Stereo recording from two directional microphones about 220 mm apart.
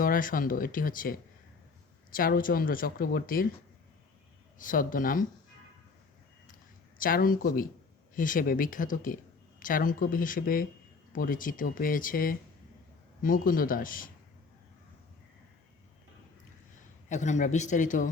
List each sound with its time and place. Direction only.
0.0 s speech: 40° left (ahead or behind)
4.5 s speech: 40° left (ahead or behind)
7.0 s speech: 40° left (ahead or behind)
17.1 s speech: 35° left (ahead or behind)